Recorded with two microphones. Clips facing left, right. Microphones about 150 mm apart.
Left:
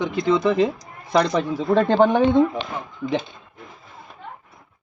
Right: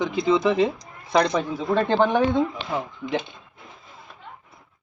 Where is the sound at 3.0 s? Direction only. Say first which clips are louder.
Left 7 dB; 35° left (ahead or behind).